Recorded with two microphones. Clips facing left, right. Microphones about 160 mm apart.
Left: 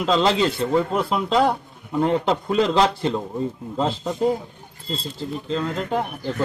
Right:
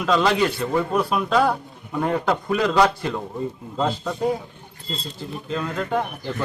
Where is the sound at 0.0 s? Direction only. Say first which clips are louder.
Even; 25° left (ahead or behind).